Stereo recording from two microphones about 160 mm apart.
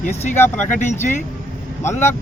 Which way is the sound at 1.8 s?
15° left (ahead or behind).